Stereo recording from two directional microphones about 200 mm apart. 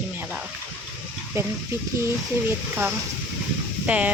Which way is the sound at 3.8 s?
5° right (ahead or behind).